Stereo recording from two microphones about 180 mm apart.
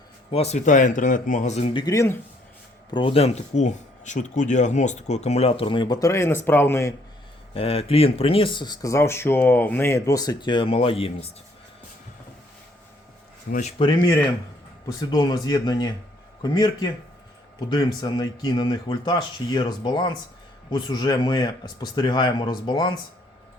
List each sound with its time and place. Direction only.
0.3 s speech: 35° left (ahead or behind); by 2.1 s 15° left (ahead or behind)
2.9 s speech: 30° left (ahead or behind); by 6.9 s 15° left (ahead or behind)
7.5 s speech: 30° left (ahead or behind)
13.5 s speech: 40° left (ahead or behind)
13.8 s speech: 25° left (ahead or behind)